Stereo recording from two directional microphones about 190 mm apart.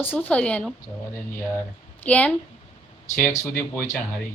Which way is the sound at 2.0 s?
5° left (ahead or behind).